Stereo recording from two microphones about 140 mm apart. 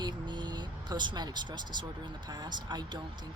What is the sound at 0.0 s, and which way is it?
Vehicle, 30° right (ahead or behind).